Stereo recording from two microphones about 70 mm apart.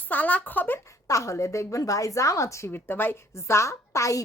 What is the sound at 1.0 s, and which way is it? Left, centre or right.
A woman's voice, left.